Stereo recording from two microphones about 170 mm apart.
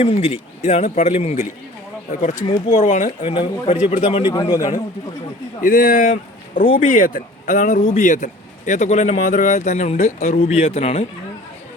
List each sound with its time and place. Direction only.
0.0 s speech: 40° left (ahead or behind)
3.3 s speech: 35° left (ahead or behind)
4.3 s a man's voice: 25° left (ahead or behind)
5.5 s speech: 55° left (ahead or behind); by 11.0 s 35° left (ahead or behind)